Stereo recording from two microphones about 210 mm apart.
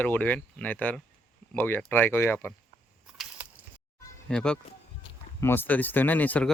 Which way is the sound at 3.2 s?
Centre (ahead or behind).